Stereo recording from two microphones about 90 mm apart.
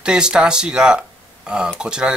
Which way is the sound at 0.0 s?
10° right (ahead or behind).